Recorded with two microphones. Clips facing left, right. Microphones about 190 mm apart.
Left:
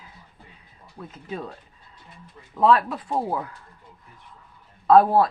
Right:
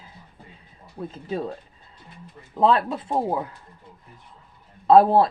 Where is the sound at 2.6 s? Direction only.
25° right (ahead or behind).